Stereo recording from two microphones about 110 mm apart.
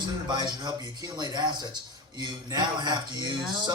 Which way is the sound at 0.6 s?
40° right (ahead or behind).